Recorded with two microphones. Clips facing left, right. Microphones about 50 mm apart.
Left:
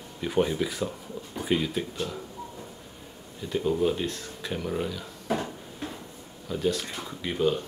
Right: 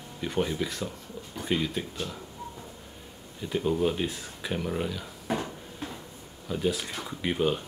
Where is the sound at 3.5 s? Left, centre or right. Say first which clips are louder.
Left 1 dB; centre.